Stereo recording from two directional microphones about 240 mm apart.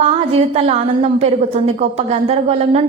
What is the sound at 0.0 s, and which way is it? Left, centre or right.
A woman's voice, right.